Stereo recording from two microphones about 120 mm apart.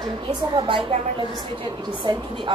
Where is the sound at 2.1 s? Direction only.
45° right (ahead or behind).